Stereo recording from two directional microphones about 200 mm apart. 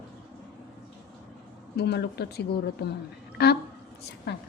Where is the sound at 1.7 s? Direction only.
55° left (ahead or behind).